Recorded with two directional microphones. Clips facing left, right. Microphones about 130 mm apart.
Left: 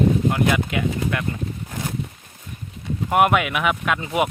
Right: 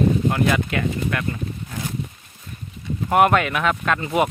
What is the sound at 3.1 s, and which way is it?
Speech, 10° left (ahead or behind).